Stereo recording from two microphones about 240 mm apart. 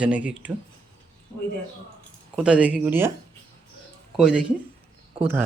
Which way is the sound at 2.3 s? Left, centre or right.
Centre.